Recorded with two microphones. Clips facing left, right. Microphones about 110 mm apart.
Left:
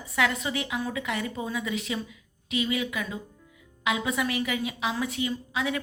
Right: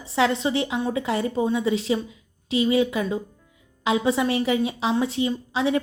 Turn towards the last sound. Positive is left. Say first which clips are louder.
# right 6 dB
turn(degrees=-30)  # may be behind; listen again after turning